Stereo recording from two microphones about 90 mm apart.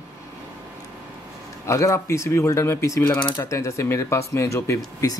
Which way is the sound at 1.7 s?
35° left (ahead or behind).